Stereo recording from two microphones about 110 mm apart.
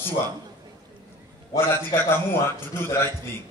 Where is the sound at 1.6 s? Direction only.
20° left (ahead or behind).